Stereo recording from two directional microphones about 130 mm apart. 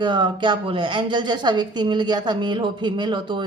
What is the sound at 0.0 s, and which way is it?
A woman's voice, 35° right (ahead or behind).